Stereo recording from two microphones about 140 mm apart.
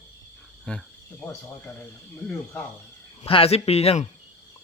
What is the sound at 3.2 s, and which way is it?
Speech, 40° left (ahead or behind).